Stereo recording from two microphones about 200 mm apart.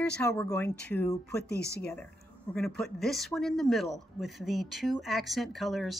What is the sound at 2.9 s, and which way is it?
Speech, centre (ahead or behind).